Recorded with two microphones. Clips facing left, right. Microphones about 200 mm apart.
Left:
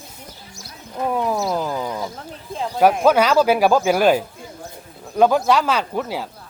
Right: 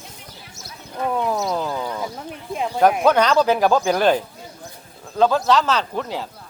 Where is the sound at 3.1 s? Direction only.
10° left (ahead or behind).